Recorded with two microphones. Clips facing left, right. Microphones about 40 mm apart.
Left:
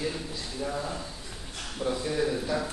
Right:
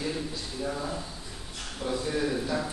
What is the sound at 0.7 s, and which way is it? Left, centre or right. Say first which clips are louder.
A man's voice: right 1 dB; centre.